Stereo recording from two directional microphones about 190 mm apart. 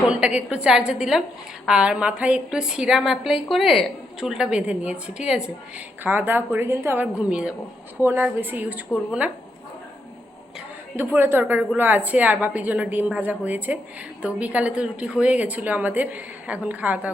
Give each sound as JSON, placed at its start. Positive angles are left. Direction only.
{"t": 0.1, "sound": "a woman's voice", "side_deg": -5}
{"t": 10.9, "sound": "a woman's voice", "side_deg": -10}